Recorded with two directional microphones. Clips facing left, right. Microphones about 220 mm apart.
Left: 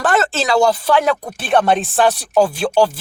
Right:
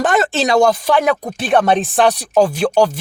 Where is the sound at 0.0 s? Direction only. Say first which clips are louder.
Right 2 dB; 15° right (ahead or behind).